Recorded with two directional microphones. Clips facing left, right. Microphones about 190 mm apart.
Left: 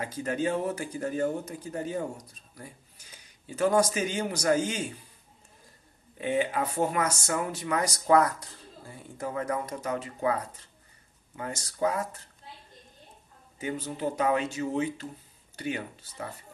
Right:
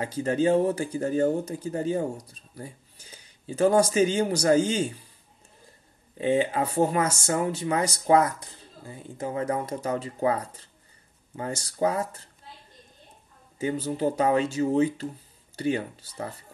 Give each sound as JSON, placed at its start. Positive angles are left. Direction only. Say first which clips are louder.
{"t": 0.0, "sound": "speech", "louder": "right 5 dB", "side_deg": -30}
{"t": 6.1, "sound": "speech", "louder": "right 4 dB", "side_deg": -25}
{"t": 13.6, "sound": "speech", "louder": "right 6 dB", "side_deg": -30}